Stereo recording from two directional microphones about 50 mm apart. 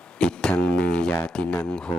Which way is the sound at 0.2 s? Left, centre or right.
Centre.